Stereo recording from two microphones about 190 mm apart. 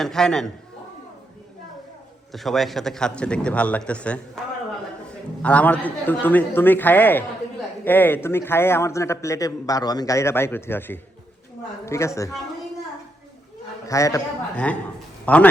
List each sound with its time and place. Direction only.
0.0 s a man's voice: centre (ahead or behind)
2.3 s a man's voice: centre (ahead or behind)
13.8 s a man's voice: 15° left (ahead or behind)
14.5 s a man's voice: 5° left (ahead or behind)